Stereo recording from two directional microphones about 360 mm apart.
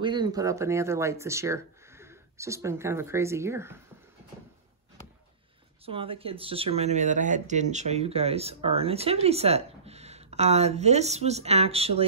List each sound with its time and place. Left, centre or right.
0.0 s speech: centre
5.9 s speech: centre